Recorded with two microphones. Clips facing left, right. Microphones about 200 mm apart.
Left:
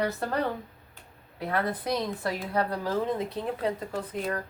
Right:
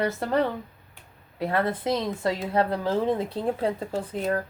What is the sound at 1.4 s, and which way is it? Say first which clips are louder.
Speech: right 4 dB; 25° right (ahead or behind).